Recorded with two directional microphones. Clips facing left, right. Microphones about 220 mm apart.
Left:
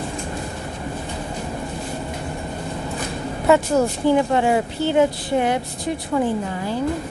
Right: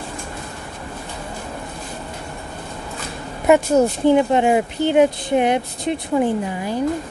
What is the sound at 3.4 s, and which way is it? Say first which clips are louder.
A woman's voice: right 3 dB; 20° right (ahead or behind).